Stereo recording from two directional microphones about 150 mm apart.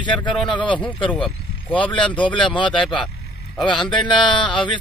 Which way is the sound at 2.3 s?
30° left (ahead or behind).